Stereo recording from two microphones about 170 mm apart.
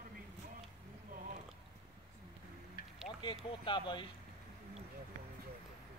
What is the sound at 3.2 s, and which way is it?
Speech, 30° left (ahead or behind).